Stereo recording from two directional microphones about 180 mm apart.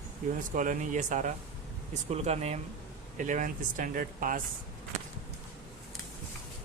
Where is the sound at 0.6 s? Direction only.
45° right (ahead or behind).